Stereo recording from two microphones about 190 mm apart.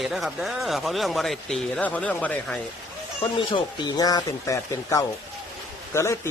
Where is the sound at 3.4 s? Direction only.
25° left (ahead or behind).